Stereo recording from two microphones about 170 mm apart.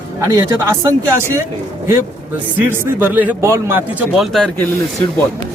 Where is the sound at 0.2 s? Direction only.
20° right (ahead or behind).